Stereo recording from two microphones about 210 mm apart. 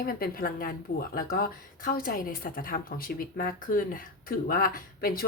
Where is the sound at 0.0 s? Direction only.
45° left (ahead or behind).